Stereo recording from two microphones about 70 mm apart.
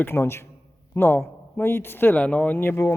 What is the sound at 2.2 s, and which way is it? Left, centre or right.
Speech, centre.